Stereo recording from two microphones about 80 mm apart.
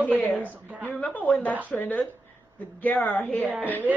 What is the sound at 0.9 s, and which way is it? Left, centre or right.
A woman's voice, centre.